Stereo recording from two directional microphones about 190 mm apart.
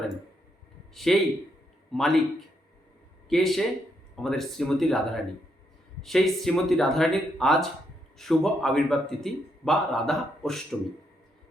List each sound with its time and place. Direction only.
1.1 s a man's voice: centre (ahead or behind)
3.2 s a man's voice: centre (ahead or behind)